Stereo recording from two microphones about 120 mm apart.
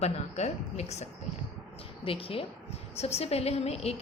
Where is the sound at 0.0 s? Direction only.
65° left (ahead or behind).